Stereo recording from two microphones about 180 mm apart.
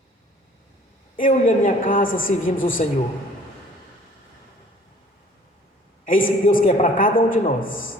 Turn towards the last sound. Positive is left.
turn(degrees=50)  # may be behind; listen again after turning